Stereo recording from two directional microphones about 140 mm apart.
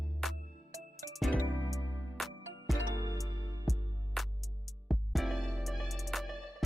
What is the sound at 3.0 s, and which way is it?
Music, 25° right (ahead or behind).